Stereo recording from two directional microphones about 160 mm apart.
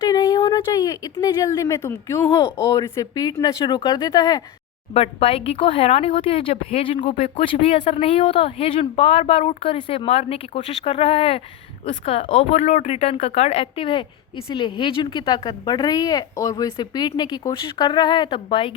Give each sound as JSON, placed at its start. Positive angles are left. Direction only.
{"t": 0.1, "sound": "speech", "side_deg": 25}
{"t": 4.9, "sound": "a woman's voice", "side_deg": 35}